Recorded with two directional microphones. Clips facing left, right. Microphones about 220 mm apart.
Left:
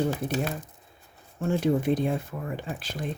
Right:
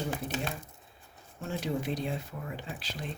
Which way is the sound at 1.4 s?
50° left (ahead or behind).